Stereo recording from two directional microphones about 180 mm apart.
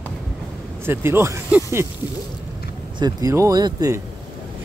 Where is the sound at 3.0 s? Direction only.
20° right (ahead or behind).